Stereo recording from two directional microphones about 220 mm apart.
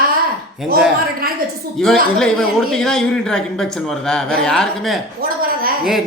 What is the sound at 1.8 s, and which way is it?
Speech, centre (ahead or behind).